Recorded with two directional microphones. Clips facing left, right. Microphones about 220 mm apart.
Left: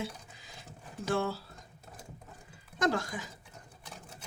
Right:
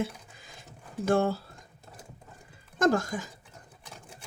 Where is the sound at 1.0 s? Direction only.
50° right (ahead or behind).